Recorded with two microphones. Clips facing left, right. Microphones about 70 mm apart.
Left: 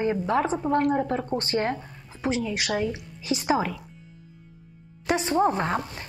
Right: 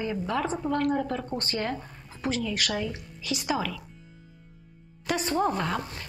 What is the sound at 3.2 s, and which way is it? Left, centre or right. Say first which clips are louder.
Speech: left 5 dB; left.